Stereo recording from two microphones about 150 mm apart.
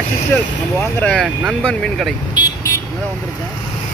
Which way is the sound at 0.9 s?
5° left (ahead or behind).